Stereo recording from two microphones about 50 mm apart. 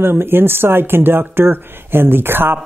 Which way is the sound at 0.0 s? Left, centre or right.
Right.